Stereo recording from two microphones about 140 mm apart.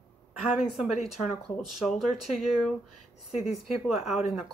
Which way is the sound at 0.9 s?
55° left (ahead or behind).